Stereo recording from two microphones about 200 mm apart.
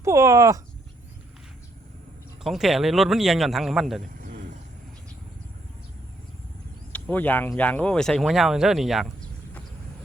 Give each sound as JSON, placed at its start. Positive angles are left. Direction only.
{"t": 0.0, "sound": "speech", "side_deg": -15}
{"t": 2.4, "sound": "speech", "side_deg": 0}
{"t": 4.2, "sound": "a sound", "side_deg": -45}
{"t": 6.9, "sound": "speech", "side_deg": 10}